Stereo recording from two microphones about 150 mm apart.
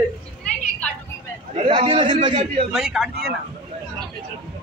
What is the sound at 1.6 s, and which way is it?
Speech, 35° right (ahead or behind).